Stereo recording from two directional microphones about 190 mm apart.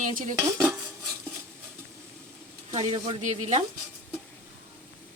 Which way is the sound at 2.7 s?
35° right (ahead or behind).